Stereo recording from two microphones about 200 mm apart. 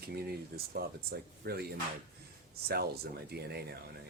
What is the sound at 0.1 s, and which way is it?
Speech, 50° right (ahead or behind).